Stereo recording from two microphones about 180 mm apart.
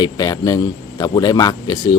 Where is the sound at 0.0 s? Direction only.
20° left (ahead or behind).